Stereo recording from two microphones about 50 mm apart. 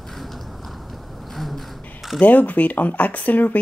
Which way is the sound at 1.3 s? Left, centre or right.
Centre.